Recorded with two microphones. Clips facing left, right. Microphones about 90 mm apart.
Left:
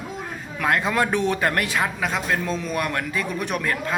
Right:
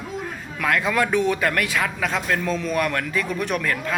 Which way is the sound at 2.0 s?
15° left (ahead or behind).